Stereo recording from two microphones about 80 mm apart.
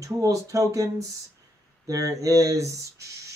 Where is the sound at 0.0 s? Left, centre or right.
Right.